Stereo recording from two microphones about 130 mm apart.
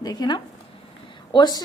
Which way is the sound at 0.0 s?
30° left (ahead or behind).